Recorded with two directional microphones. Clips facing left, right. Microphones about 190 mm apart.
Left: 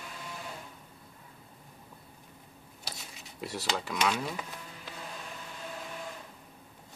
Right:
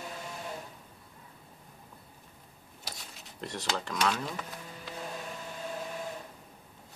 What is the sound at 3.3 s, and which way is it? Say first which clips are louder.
Speech: left 1 dB; 5° left (ahead or behind).